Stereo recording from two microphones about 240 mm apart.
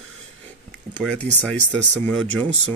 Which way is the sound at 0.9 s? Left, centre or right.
Centre.